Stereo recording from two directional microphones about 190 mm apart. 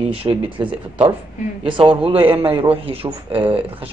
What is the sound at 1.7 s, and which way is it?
A man's voice, 25° right (ahead or behind).